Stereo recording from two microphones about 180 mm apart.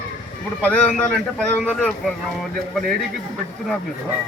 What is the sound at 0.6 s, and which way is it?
A man's voice, 10° left (ahead or behind).